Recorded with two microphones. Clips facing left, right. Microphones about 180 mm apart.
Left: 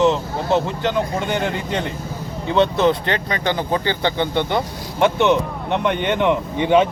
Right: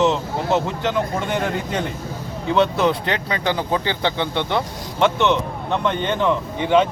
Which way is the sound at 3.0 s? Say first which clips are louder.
Left 1 dB; 10° right (ahead or behind).